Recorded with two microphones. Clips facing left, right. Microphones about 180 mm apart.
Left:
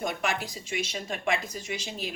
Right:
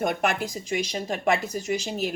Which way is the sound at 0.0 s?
55° right (ahead or behind).